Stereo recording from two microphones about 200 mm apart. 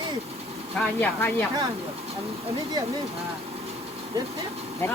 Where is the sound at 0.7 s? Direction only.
5° left (ahead or behind).